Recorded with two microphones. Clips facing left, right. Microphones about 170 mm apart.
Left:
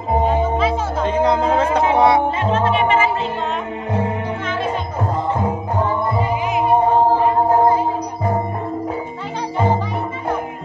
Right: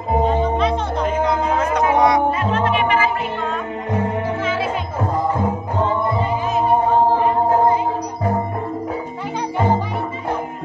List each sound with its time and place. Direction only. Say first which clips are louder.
0.2 s music: even; 5° left (ahead or behind)
1.0 s music: left 4 dB; 35° left (ahead or behind)